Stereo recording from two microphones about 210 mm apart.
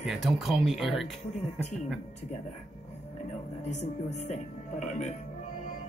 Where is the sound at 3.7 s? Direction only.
35° left (ahead or behind).